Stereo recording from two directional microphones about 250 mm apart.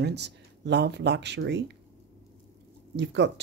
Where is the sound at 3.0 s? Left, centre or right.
Right.